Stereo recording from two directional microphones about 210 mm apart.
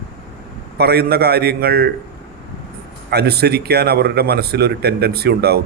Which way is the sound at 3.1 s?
50° right (ahead or behind).